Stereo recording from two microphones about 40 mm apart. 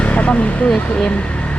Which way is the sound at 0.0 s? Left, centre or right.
Left.